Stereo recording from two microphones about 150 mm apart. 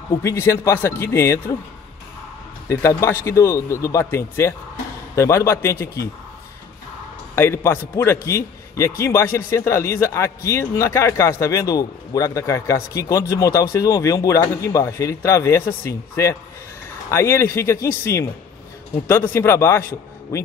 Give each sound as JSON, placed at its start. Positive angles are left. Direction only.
{"t": 0.1, "sound": "a man's voice", "side_deg": 20}
{"t": 2.7, "sound": "a man's voice", "side_deg": 20}
{"t": 7.3, "sound": "a man's voice", "side_deg": 15}